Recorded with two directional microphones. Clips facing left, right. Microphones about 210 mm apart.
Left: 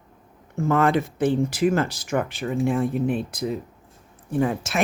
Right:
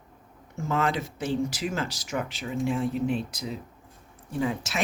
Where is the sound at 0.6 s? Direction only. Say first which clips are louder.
Left 7 dB; 55° left (ahead or behind).